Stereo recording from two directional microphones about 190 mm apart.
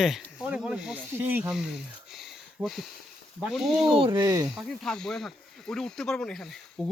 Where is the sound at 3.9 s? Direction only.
25° right (ahead or behind).